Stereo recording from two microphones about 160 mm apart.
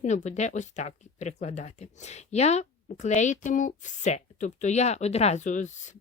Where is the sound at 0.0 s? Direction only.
50° left (ahead or behind).